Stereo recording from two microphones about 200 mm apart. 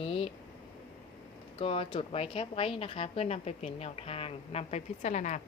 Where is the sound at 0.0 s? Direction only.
25° left (ahead or behind).